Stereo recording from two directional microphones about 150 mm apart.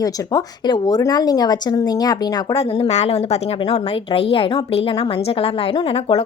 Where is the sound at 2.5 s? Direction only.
40° left (ahead or behind).